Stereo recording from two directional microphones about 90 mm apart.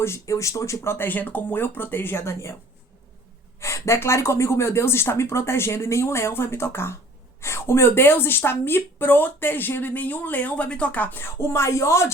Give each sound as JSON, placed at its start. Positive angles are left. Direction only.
{"t": 0.0, "sound": "speech", "side_deg": 35}
{"t": 3.6, "sound": "speech", "side_deg": 35}